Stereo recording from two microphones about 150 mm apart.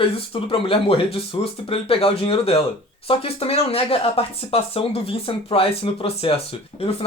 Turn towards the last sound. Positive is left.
turn(degrees=40)  # may be behind; listen again after turning